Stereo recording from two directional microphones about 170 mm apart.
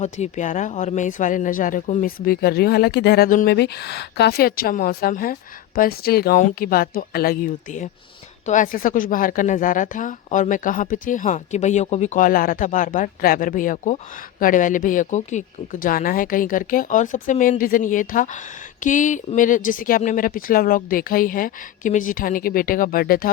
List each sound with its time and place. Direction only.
0.0 s speech: 45° left (ahead or behind); by 7.3 s 60° left (ahead or behind)
8.4 s speech: 50° left (ahead or behind)